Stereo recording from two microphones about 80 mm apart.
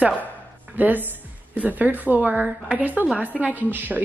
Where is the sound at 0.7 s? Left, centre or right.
Right.